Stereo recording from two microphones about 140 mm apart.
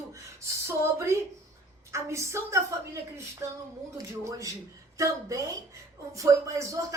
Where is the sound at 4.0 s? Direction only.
25° right (ahead or behind).